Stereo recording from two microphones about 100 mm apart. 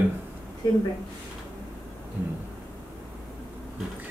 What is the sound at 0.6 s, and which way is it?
Speech, 45° left (ahead or behind).